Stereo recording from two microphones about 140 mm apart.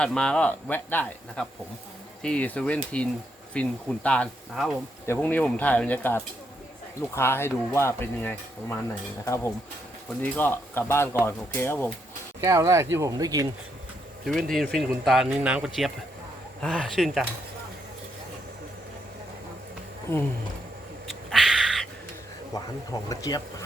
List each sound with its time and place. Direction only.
0.0 s speech: 5° left (ahead or behind)
12.4 s speech: 20° right (ahead or behind)
14.3 s speech: 5° left (ahead or behind)
21.2 s a sound: centre (ahead or behind)
22.5 s speech: 25° left (ahead or behind)